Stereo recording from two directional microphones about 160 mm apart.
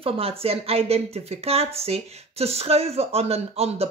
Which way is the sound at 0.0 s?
35° right (ahead or behind).